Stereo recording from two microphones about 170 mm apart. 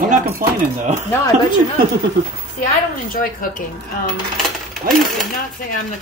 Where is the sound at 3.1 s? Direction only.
55° left (ahead or behind).